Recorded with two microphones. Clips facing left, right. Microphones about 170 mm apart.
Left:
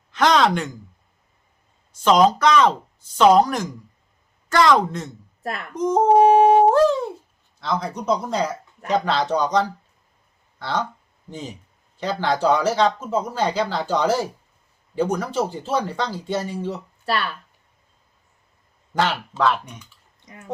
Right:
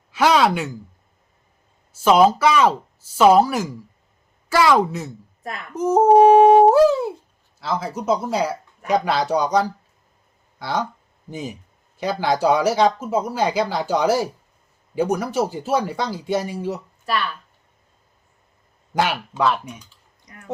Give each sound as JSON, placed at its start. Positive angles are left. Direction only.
{"t": 0.1, "sound": "speech", "side_deg": -10}
{"t": 1.9, "sound": "speech", "side_deg": -5}
{"t": 6.2, "sound": "a sound", "side_deg": -10}
{"t": 7.6, "sound": "speech", "side_deg": -5}
{"t": 18.9, "sound": "speech", "side_deg": -10}
{"t": 20.2, "sound": "speech", "side_deg": 20}